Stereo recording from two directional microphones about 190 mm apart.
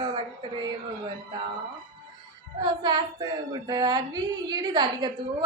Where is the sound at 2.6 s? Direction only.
20° right (ahead or behind).